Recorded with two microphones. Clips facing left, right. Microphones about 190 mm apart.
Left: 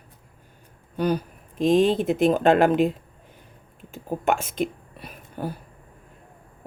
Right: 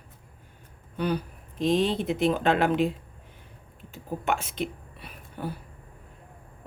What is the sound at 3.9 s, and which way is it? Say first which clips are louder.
Speech: left 5 dB; 45° left (ahead or behind).